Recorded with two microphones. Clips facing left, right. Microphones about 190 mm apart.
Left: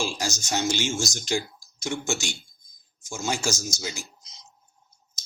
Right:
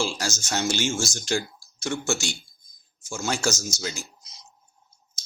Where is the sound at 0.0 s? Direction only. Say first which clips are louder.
Right 1 dB; 15° left (ahead or behind).